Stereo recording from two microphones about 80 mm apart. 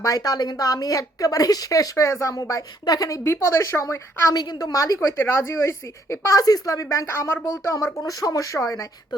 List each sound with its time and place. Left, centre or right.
0.0 s speech: left
2.3 s speech: left
3.2 s a woman's voice: left
4.4 s speech: left
4.9 s a woman's voice: left
6.9 s a woman's voice: left